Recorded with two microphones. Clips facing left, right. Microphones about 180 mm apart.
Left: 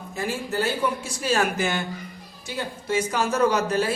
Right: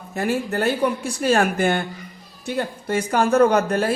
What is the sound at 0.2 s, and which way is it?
A woman's voice, 60° right (ahead or behind).